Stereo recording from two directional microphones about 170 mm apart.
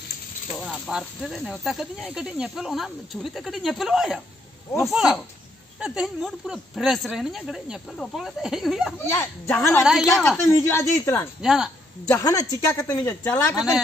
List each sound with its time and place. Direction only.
0.6 s speech: centre (ahead or behind)
8.9 s speech: 15° left (ahead or behind)
9.8 s speech: centre (ahead or behind)
10.2 s speech: 15° left (ahead or behind)
11.4 s speech: 5° right (ahead or behind)
12.2 s speech: 20° left (ahead or behind)